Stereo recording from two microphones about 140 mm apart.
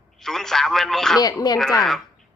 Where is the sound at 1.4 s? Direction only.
30° left (ahead or behind).